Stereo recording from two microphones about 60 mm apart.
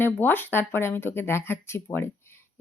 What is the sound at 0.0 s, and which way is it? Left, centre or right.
A woman's voice, left.